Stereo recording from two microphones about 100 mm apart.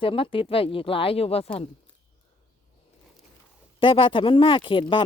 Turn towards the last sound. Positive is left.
turn(degrees=55)  # may be behind; listen again after turning